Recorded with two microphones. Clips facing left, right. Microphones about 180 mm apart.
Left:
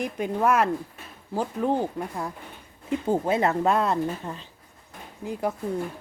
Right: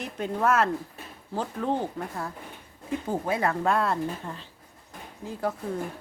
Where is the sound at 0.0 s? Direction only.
10° left (ahead or behind).